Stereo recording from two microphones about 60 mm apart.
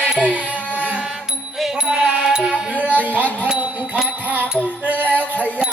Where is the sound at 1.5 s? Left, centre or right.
Centre.